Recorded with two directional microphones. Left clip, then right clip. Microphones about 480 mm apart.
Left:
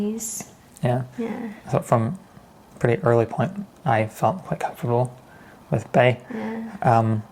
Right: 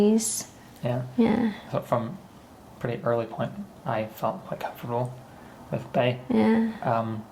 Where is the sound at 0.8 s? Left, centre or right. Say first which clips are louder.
Left 6 dB; left.